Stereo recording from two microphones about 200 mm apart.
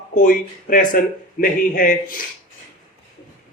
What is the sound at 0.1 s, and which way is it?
A man's voice, 40° left (ahead or behind).